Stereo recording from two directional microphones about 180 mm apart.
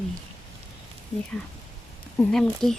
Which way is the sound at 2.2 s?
5° left (ahead or behind).